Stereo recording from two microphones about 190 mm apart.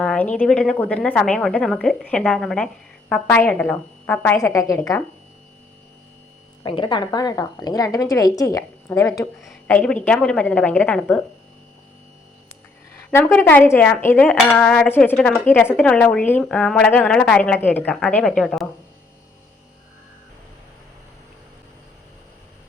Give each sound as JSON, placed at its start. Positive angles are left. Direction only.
{"t": 0.0, "sound": "a woman's voice", "side_deg": 5}
{"t": 6.6, "sound": "a woman's voice", "side_deg": 25}
{"t": 13.1, "sound": "a woman's voice", "side_deg": 10}